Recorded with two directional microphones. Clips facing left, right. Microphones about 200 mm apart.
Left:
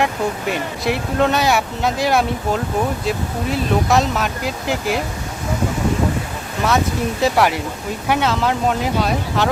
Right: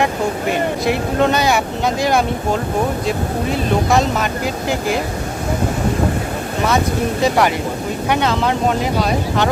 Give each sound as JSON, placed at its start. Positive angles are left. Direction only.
{"t": 0.9, "sound": "speech", "side_deg": 0}
{"t": 6.7, "sound": "speech", "side_deg": 0}